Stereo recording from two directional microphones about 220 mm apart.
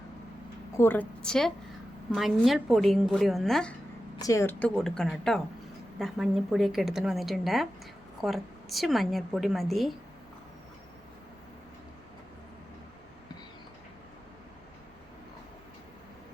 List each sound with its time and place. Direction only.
0.8 s a woman's voice: 10° left (ahead or behind)
4.2 s a woman's voice: 15° left (ahead or behind)